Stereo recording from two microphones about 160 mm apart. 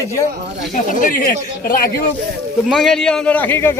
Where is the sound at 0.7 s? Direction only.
55° left (ahead or behind).